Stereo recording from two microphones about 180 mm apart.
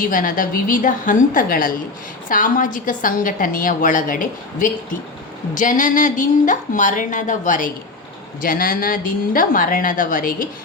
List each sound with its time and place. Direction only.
0.0 s a woman's voice: 50° left (ahead or behind)